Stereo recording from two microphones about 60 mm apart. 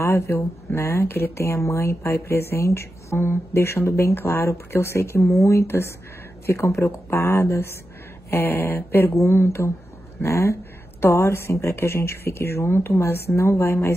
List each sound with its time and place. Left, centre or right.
0.0 s speech: left
8.3 s speech: left
9.1 s a woman's voice: left